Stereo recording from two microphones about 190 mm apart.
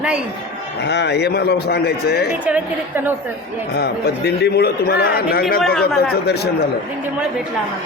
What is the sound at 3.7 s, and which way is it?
A man's voice, 60° left (ahead or behind).